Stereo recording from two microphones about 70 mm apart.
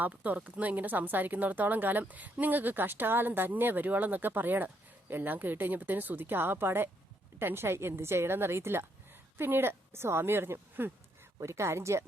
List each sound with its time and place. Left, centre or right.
0.0 s a woman's voice: right
11.3 s a woman's voice: right